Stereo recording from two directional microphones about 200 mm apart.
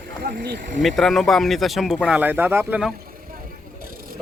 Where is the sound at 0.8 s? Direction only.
Centre (ahead or behind).